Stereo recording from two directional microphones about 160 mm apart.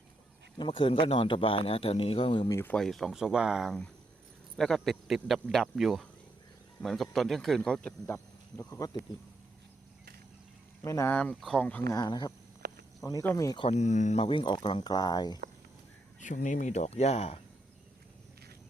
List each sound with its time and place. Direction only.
0.6 s a man's voice: 30° left (ahead or behind)
2.5 s speech: 15° left (ahead or behind)
2.7 s speech: centre (ahead or behind)
8.0 s speech: 20° left (ahead or behind)
10.8 s speech: 20° left (ahead or behind)
11.1 s speech: 10° left (ahead or behind)
11.9 s speech: 25° left (ahead or behind)
12.6 s a sound: 70° right (ahead or behind)
13.0 s speech: 20° left (ahead or behind)
13.7 s a man's voice: 45° left (ahead or behind); by 15.4 s 25° left (ahead or behind)
16.2 s speech: 50° left (ahead or behind)